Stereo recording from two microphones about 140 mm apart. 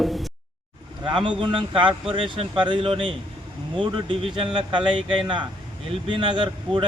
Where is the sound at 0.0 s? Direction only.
Centre (ahead or behind).